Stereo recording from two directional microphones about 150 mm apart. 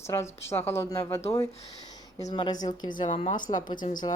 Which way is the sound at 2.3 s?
30° left (ahead or behind).